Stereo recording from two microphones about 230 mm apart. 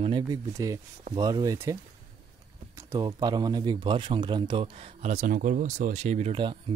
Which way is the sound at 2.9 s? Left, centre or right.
Centre.